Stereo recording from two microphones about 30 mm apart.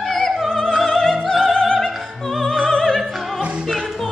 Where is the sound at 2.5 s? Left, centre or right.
Left.